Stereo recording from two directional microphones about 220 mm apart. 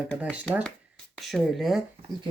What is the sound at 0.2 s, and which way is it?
Speech, 5° right (ahead or behind).